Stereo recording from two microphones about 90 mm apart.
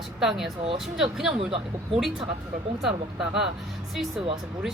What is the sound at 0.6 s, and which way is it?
Speech, 75° right (ahead or behind).